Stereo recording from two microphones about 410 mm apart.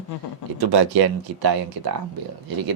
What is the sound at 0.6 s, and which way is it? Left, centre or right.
Speech, right.